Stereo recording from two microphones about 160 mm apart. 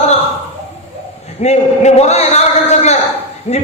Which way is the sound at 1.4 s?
45° left (ahead or behind).